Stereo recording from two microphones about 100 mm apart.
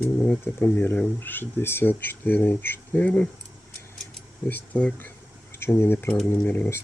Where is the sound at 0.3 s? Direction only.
20° left (ahead or behind).